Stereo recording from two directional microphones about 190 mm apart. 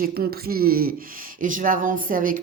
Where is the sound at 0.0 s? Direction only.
55° right (ahead or behind).